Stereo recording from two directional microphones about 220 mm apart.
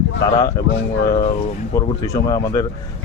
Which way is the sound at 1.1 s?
25° left (ahead or behind).